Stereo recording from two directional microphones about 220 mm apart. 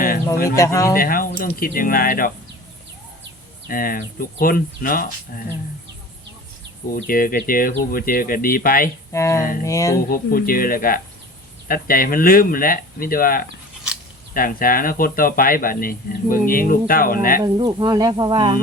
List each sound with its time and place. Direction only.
0.5 s speech: 15° left (ahead or behind)
0.9 s speech: 40° left (ahead or behind)
3.7 s speech: 40° left (ahead or behind)
6.9 s speech: 40° left (ahead or behind)
9.1 s speech: 15° left (ahead or behind)
10.1 s speech: 40° left (ahead or behind)
17.4 s speech: 20° right (ahead or behind)